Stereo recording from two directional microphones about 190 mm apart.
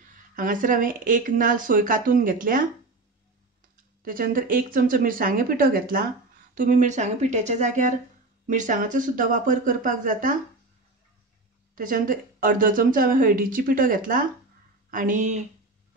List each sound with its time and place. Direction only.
0.4 s a woman's voice: 45° right (ahead or behind)
4.0 s a woman's voice: 45° right (ahead or behind)
11.7 s a woman's voice: 45° right (ahead or behind)